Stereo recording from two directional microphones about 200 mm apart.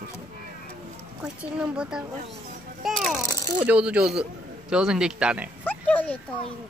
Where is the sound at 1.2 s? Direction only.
5° right (ahead or behind).